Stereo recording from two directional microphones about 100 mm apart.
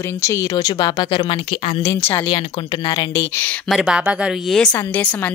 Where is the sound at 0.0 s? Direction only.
30° left (ahead or behind); by 1.6 s 50° left (ahead or behind).